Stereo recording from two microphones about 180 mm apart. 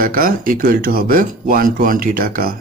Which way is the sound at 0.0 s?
50° right (ahead or behind).